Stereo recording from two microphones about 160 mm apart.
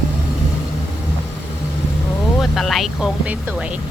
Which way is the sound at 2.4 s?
Centre (ahead or behind).